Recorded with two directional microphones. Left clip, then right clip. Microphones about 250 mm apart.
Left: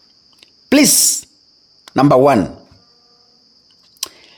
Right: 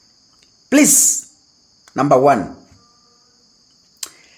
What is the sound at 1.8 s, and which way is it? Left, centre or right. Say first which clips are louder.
Speech: left 2 dB; left.